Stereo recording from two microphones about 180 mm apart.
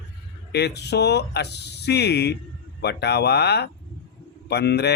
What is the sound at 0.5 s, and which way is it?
Speech, 70° left (ahead or behind).